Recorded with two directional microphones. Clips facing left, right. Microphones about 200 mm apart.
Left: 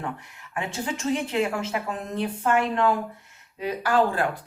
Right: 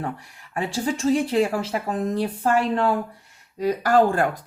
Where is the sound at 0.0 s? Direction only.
35° right (ahead or behind).